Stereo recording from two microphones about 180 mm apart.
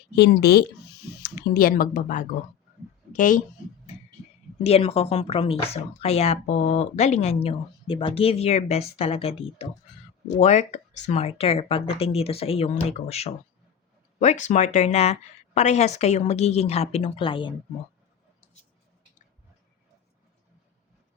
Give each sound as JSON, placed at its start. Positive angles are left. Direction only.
{"t": 0.2, "sound": "speech", "side_deg": 70}
{"t": 1.2, "sound": "speech", "side_deg": 55}
{"t": 4.6, "sound": "speech", "side_deg": 35}